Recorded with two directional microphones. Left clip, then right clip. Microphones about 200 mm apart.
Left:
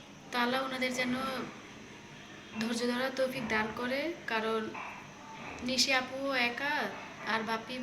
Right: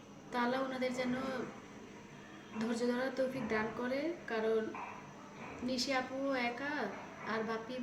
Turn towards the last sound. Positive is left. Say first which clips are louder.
# left 5 dB
turn(degrees=-15)  # may be behind; listen again after turning